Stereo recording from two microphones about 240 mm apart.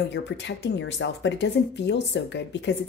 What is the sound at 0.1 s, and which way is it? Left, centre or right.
Speech, left.